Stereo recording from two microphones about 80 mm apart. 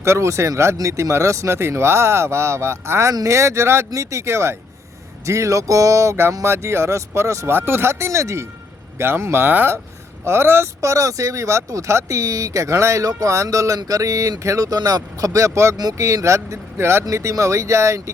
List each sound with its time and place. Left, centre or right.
0.0 s speech: right
10.8 s speech: right